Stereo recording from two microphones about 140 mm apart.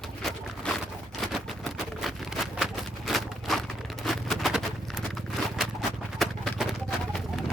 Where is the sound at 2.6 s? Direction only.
Centre (ahead or behind).